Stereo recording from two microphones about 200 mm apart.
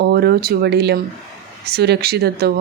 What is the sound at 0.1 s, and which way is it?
Speech, 50° right (ahead or behind).